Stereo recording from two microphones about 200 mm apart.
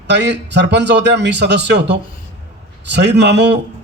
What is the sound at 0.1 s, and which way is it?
A man's voice, 60° right (ahead or behind).